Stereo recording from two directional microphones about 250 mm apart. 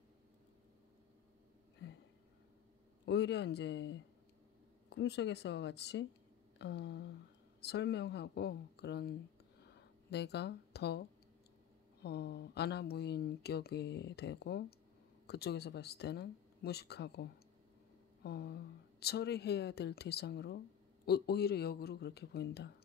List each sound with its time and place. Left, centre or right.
3.1 s speech: left
9.6 s a sound: left
12.0 s speech: left